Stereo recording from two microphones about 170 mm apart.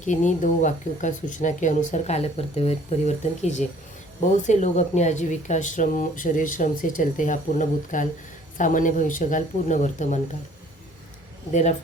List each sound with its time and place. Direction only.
0.0 s speech: 45° left (ahead or behind)